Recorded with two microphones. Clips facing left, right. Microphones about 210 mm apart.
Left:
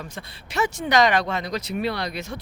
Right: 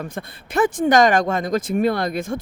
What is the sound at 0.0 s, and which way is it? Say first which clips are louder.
Speech: right 7 dB; 55° right (ahead or behind).